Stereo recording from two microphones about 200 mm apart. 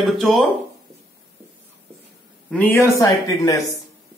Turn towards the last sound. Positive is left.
turn(degrees=15)  # may be behind; listen again after turning